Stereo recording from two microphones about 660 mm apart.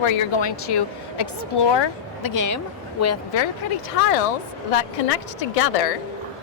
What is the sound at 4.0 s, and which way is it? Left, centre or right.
Speech, left.